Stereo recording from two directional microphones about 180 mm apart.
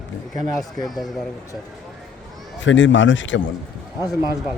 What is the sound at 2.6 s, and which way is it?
Speech, 90° left.